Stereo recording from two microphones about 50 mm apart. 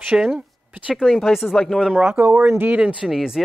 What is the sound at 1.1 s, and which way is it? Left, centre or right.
Speech, centre.